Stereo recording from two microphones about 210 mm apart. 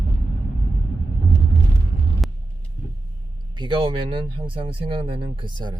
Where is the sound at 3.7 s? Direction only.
25° right (ahead or behind).